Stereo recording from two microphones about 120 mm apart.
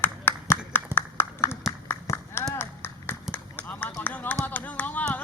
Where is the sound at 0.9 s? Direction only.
20° left (ahead or behind).